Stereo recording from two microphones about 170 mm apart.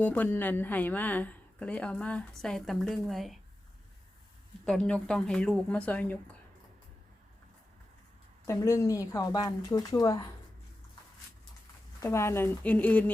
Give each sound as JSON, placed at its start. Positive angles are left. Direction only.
{"t": 0.0, "sound": "a woman's voice", "side_deg": 10}
{"t": 4.6, "sound": "a woman's voice", "side_deg": 5}
{"t": 8.4, "sound": "speech", "side_deg": 20}
{"t": 11.9, "sound": "a woman's voice", "side_deg": 15}